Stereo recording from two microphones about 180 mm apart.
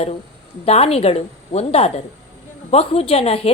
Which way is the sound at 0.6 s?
35° left (ahead or behind).